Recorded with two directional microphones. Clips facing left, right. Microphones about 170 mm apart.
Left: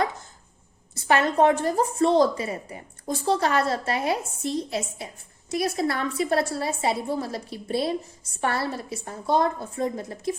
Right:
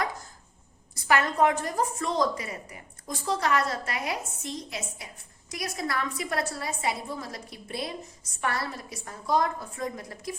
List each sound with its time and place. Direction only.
0.9 s a woman's voice: 25° left (ahead or behind)